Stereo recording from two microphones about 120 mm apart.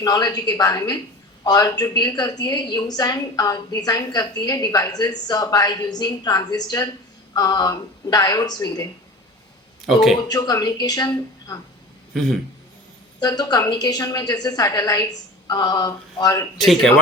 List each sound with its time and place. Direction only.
0.0 s a woman's voice: 35° left (ahead or behind)
9.8 s speech: centre (ahead or behind)
10.2 s a woman's voice: 35° left (ahead or behind)
12.1 s speech: 5° left (ahead or behind)
13.1 s a woman's voice: 35° left (ahead or behind)
16.6 s speech: centre (ahead or behind)